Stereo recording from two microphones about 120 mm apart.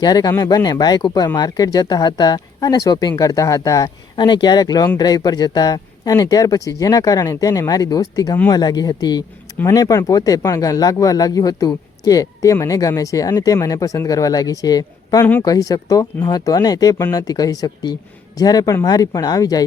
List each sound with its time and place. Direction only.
0.0 s speech: 30° left (ahead or behind)
15.2 s speech: 15° left (ahead or behind)
15.4 s speech: 30° left (ahead or behind)